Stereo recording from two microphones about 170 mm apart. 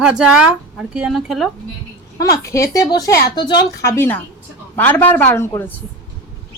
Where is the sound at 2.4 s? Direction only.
15° left (ahead or behind).